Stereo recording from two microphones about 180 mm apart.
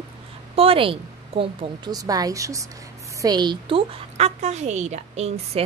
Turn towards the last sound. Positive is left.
turn(degrees=-35)  # may be behind; listen again after turning